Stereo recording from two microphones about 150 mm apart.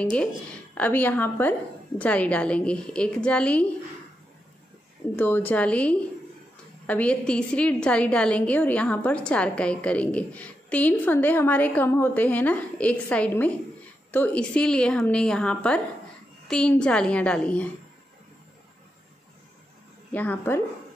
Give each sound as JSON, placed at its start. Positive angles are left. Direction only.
{"t": 0.0, "sound": "a woman's voice", "side_deg": 10}
{"t": 5.1, "sound": "a woman's voice", "side_deg": 15}
{"t": 20.1, "sound": "a woman's voice", "side_deg": 10}